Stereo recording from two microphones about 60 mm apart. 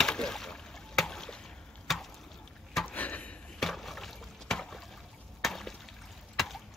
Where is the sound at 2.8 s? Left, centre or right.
Left.